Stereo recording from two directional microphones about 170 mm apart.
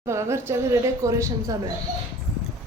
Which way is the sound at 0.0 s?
15° right (ahead or behind).